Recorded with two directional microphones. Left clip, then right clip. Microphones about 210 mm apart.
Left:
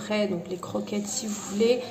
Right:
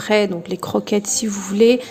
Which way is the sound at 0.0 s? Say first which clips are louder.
Right 10 dB; 40° right (ahead or behind).